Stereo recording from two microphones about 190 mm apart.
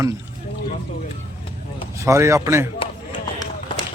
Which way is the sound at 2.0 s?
15° right (ahead or behind).